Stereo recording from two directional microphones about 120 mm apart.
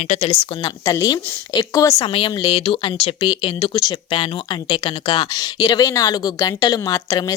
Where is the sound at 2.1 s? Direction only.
45° left (ahead or behind).